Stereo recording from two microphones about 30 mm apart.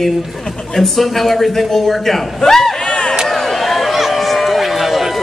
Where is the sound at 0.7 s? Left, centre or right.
Centre.